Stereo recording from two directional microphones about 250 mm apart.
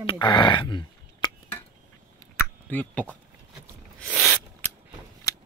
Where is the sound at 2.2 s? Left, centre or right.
Centre.